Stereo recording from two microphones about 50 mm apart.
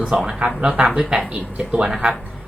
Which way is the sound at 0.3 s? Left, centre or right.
Right.